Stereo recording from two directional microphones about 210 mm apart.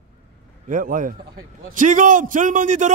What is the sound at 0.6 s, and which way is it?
A man's voice, 40° right (ahead or behind).